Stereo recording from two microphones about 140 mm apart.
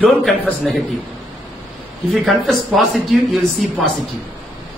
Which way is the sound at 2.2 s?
Centre (ahead or behind).